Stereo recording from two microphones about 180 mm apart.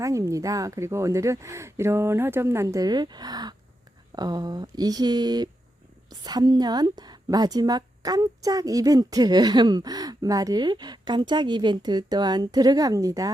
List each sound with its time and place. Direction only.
0.0 s a woman's voice: 15° right (ahead or behind)